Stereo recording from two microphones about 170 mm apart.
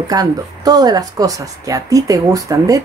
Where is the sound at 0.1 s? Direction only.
25° right (ahead or behind).